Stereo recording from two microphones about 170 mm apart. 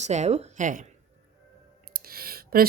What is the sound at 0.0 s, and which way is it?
Speech, 40° right (ahead or behind).